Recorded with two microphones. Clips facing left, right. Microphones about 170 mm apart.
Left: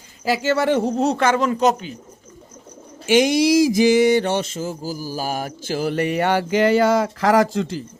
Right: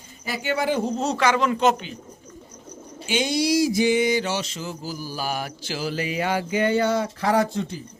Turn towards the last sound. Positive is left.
turn(degrees=90)